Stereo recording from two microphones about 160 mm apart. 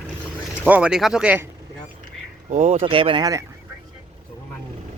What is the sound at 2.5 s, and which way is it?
Speech, 50° right (ahead or behind).